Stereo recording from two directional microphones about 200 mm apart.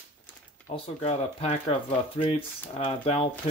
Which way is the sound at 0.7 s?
30° left (ahead or behind).